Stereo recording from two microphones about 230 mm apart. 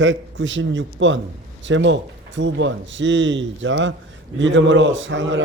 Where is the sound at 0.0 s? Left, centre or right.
Right.